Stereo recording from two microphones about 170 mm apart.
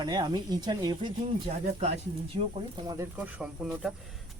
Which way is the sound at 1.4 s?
40° right (ahead or behind).